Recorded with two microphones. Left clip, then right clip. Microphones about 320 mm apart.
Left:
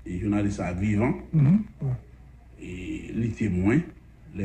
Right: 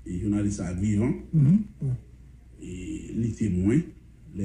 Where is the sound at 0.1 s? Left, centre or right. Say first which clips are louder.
Left 1 dB; centre.